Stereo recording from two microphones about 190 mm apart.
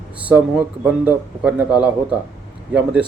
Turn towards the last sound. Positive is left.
turn(degrees=-5)  # may be behind; listen again after turning